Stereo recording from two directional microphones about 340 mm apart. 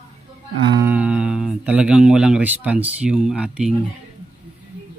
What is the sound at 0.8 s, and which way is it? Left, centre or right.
Speech, centre.